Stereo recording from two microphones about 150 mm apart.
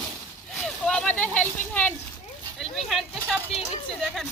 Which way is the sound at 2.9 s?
Centre (ahead or behind).